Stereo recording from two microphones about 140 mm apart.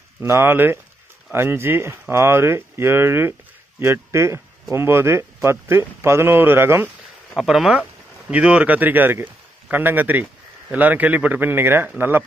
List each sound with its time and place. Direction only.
0.2 s speech: 15° right (ahead or behind)
7.3 s speech: 5° right (ahead or behind)